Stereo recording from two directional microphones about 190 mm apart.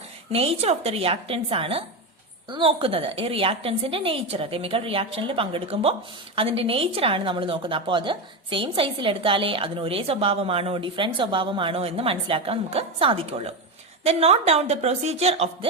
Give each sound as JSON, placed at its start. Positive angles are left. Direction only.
{"t": 0.3, "sound": "a woman's voice", "side_deg": -30}